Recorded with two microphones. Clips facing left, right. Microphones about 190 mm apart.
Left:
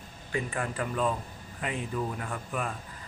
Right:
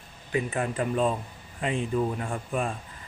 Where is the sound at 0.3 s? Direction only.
25° right (ahead or behind).